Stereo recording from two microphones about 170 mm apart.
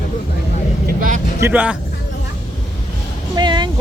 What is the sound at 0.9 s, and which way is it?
Speech, 55° right (ahead or behind).